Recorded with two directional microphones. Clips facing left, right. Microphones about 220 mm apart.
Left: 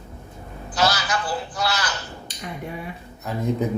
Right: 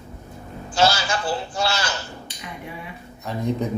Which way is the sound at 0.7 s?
25° right (ahead or behind).